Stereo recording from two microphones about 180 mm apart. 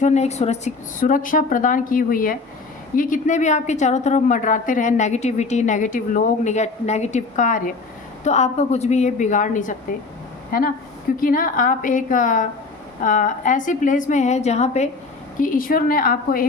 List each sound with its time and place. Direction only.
0.0 s a woman's voice: 40° left (ahead or behind)
15.4 s a woman's voice: 50° left (ahead or behind)